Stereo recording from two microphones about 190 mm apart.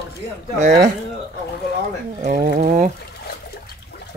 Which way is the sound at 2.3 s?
45° right (ahead or behind).